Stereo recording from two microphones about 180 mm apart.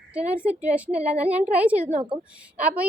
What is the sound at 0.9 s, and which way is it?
Speech, 35° right (ahead or behind).